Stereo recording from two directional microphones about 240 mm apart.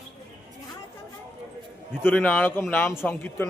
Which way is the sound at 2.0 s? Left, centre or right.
Centre.